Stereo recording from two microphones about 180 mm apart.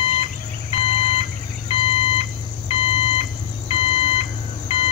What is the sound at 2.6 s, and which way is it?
Alarm clock, 30° left (ahead or behind).